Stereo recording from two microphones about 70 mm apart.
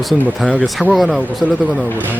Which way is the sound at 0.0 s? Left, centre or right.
Centre.